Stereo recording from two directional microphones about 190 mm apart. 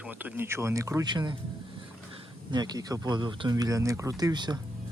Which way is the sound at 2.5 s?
20° right (ahead or behind).